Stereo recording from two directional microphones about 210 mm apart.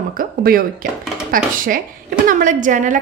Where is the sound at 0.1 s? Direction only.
45° right (ahead or behind).